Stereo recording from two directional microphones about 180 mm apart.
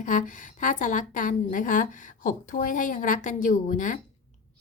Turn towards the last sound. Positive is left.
turn(degrees=45)  # may be behind; listen again after turning